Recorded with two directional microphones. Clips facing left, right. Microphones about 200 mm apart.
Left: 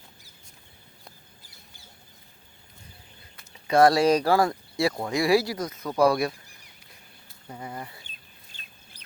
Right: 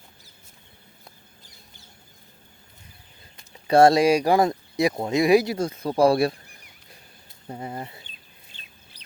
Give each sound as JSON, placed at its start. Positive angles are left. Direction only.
{"t": 1.0, "sound": "a sound", "side_deg": 5}
{"t": 3.7, "sound": "speech", "side_deg": -25}
{"t": 4.0, "sound": "speech", "side_deg": -15}
{"t": 7.4, "sound": "speech", "side_deg": -30}
{"t": 8.5, "sound": "chicken", "side_deg": 50}